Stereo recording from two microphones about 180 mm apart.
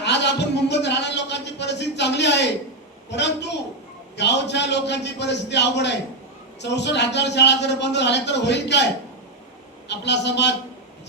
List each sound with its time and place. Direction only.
0.0 s a sound: 75° left (ahead or behind)
3.1 s a man's voice: 75° left (ahead or behind)
9.9 s a man's voice: 75° left (ahead or behind)